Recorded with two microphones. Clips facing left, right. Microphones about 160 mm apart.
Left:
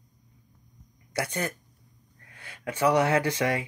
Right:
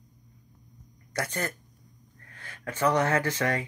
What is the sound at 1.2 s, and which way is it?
Speech, 15° left (ahead or behind).